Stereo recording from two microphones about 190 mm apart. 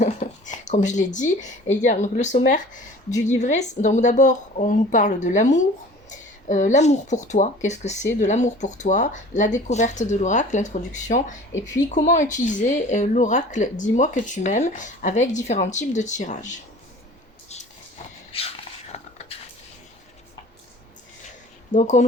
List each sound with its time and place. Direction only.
0.0 s speech: 40° left (ahead or behind)
18.3 s a sound: 30° left (ahead or behind)
21.7 s speech: 40° left (ahead or behind)